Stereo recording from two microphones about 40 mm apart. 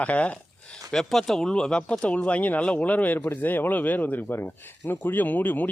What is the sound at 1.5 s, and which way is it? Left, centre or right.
Speech, left.